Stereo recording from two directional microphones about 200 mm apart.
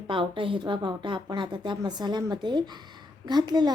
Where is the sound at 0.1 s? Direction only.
25° right (ahead or behind).